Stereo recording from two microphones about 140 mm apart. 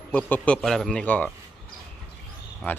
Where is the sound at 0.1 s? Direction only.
10° left (ahead or behind).